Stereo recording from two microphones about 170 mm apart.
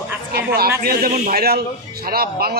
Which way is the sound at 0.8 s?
65° right (ahead or behind).